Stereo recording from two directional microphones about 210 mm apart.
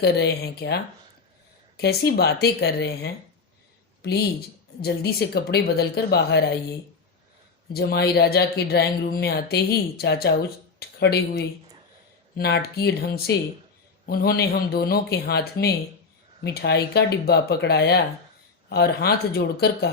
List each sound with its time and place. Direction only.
0.0 s speech: 50° left (ahead or behind)
7.7 s speech: 50° left (ahead or behind)
10.8 s a sound: 50° left (ahead or behind)
12.4 s speech: 50° left (ahead or behind)